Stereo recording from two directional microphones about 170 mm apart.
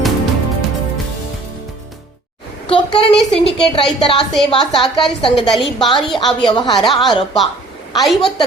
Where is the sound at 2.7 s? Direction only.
30° left (ahead or behind).